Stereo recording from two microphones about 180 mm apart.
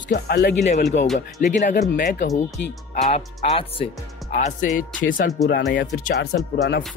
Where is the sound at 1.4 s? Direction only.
45° left (ahead or behind).